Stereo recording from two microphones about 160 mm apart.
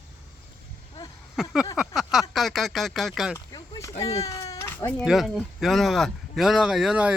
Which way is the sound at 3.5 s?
25° left (ahead or behind).